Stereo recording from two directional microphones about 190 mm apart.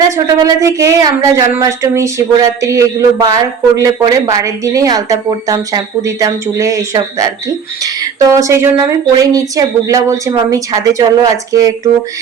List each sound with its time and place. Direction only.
0.4 s a woman's voice: 15° right (ahead or behind)